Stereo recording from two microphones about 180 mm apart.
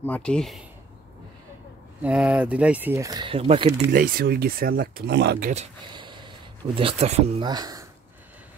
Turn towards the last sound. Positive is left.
turn(degrees=-20)  # may be behind; listen again after turning